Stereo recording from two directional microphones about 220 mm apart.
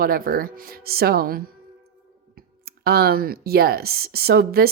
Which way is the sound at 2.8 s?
45° right (ahead or behind).